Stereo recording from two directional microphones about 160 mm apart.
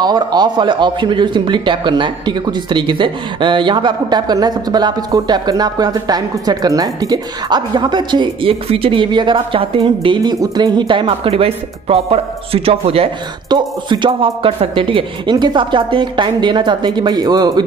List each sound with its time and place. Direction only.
0.0 s a man's voice: 25° right (ahead or behind)